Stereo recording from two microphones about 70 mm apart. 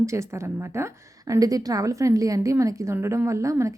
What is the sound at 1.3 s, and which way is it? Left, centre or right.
A woman's voice, right.